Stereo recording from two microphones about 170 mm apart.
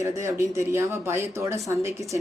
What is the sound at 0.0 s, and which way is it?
Speech, 15° right (ahead or behind).